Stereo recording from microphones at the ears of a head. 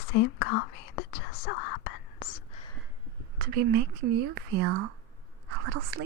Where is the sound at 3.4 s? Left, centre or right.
Right.